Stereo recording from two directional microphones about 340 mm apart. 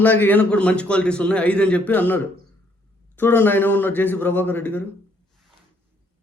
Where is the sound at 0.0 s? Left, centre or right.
Centre.